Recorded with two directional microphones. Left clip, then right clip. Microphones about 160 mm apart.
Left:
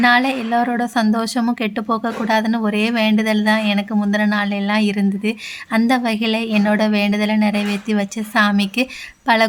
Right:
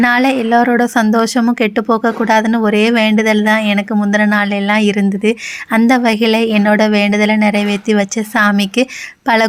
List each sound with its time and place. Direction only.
0.0 s speech: 30° right (ahead or behind)